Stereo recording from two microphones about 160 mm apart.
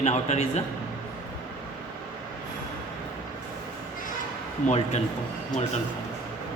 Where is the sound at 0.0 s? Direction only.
40° left (ahead or behind).